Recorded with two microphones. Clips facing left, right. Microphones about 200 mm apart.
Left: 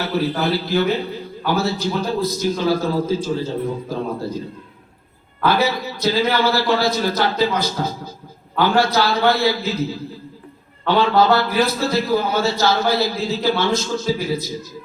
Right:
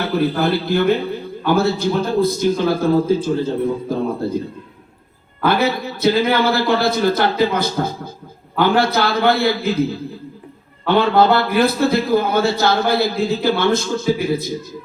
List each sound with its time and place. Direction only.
0.2 s a man's voice: 55° right (ahead or behind)
5.5 s a man's voice: 55° right (ahead or behind)